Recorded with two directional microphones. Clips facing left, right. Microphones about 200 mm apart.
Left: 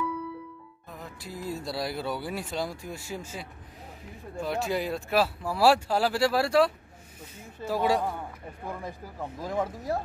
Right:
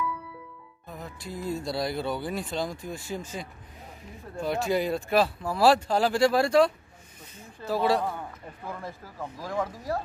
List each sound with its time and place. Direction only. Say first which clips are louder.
0.8 s speech: right 3 dB; centre (ahead or behind); by 9.9 s 20° left (ahead or behind)